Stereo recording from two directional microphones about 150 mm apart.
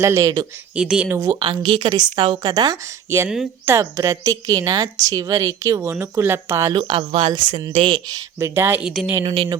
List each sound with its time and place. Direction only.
0.0 s a woman's voice: 20° right (ahead or behind)
0.8 s speech: 5° right (ahead or behind)
1.0 s a woman's voice: 20° right (ahead or behind)
6.7 s speech: 35° right (ahead or behind); by 8.9 s 15° right (ahead or behind)
8.9 s a woman's voice: centre (ahead or behind)
9.2 s speech: 35° right (ahead or behind)